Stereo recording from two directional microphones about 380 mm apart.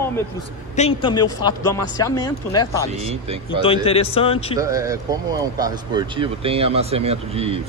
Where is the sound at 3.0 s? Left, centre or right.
Centre.